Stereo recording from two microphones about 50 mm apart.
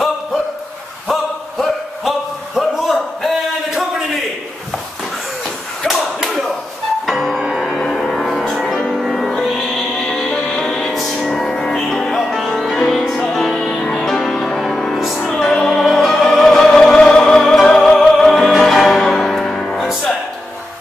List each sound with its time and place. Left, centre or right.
1.6 s a sound: centre
5.9 s a sound: centre
7.1 s music: centre
10.9 s music: centre
11.1 s music: centre
14.0 s music: centre
15.7 s opera: centre
17.2 s music: centre